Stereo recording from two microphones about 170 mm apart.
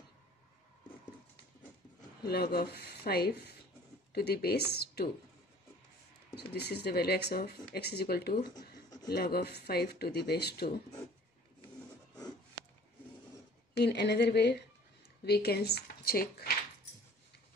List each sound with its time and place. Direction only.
2.2 s speech: 70° left (ahead or behind)
6.3 s speech: 70° left (ahead or behind)
13.7 s a woman's voice: 80° left; by 16.5 s 60° left (ahead or behind)